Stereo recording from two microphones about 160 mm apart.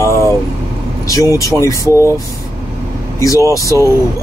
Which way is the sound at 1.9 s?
15° right (ahead or behind).